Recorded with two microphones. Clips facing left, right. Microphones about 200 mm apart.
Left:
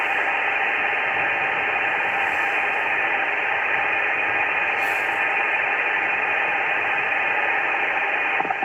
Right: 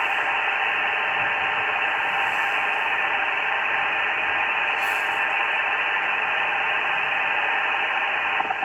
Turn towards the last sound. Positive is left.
turn(degrees=10)  # may be behind; listen again after turning